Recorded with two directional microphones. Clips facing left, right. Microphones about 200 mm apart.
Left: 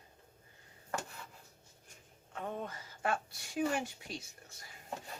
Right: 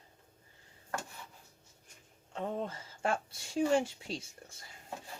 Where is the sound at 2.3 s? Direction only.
30° right (ahead or behind).